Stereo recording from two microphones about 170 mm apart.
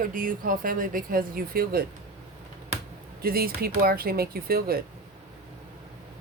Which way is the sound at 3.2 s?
60° right (ahead or behind).